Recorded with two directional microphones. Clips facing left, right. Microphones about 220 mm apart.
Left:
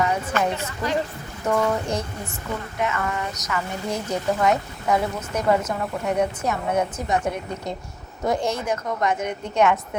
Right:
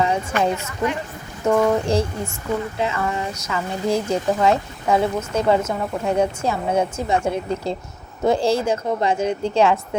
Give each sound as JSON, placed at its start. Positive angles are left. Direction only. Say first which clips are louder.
{"t": 0.0, "sound": "a woman's voice", "louder": "right 2 dB", "side_deg": -30}